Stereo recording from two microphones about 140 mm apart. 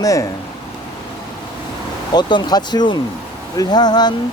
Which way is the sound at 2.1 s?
30° left (ahead or behind).